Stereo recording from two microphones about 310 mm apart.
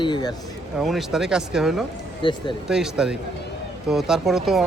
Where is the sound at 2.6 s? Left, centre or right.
Centre.